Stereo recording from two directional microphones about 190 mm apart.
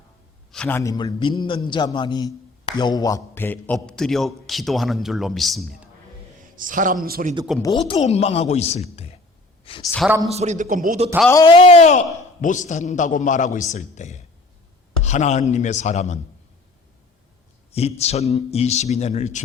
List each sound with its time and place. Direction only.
0.5 s a man's voice: 5° left (ahead or behind)
0.8 s a man's voice: 20° left (ahead or behind); by 5.9 s centre (ahead or behind)
6.4 s a man's voice: 45° right (ahead or behind)
7.6 s a man's voice: 25° left (ahead or behind)
9.8 s a man's voice: centre (ahead or behind)
10.2 s a man's voice: 35° right (ahead or behind)
11.3 s a man's voice: 20° left (ahead or behind); by 16.1 s 40° left (ahead or behind)
17.7 s a man's voice: 35° left (ahead or behind)